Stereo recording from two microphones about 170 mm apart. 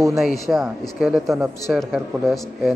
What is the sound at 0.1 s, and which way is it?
Speech, centre (ahead or behind).